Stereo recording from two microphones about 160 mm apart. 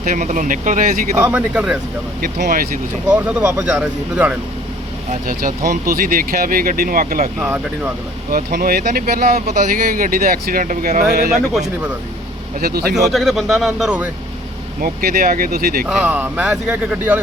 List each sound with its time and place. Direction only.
0.0 s speech: 50° right (ahead or behind)
1.3 s speech: 5° right (ahead or behind)
2.2 s speech: 65° right (ahead or behind)
3.1 s speech: 10° right (ahead or behind)
5.1 s speech: 60° right (ahead or behind)
7.3 s speech: 10° right (ahead or behind)
8.3 s speech: 60° right (ahead or behind)
12.5 s speech: 75° right (ahead or behind)
12.9 s speech: centre (ahead or behind)
14.8 s speech: 65° right (ahead or behind)
15.9 s speech: 5° right (ahead or behind)